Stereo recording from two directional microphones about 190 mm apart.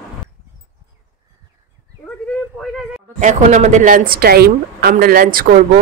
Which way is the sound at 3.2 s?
40° right (ahead or behind).